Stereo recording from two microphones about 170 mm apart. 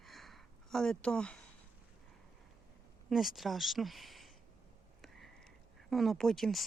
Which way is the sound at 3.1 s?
Centre (ahead or behind).